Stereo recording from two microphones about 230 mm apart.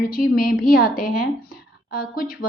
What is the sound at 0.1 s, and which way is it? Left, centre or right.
A woman's voice, left.